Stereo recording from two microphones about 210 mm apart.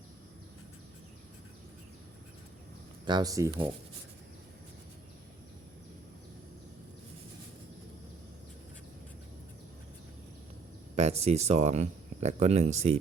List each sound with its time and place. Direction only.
3.1 s speech: 20° right (ahead or behind)
10.9 s speech: 30° right (ahead or behind)